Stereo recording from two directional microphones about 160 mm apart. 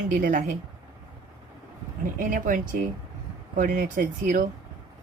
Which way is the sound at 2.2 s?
55° right (ahead or behind).